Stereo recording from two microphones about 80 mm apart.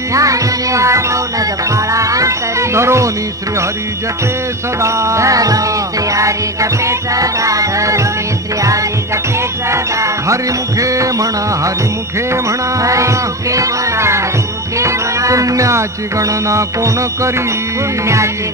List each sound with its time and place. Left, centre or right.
0.1 s music: right
4.8 s music: right
9.7 s music: right